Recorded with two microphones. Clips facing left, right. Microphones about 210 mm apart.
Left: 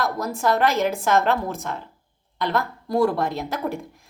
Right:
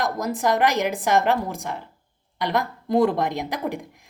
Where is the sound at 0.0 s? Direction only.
15° right (ahead or behind).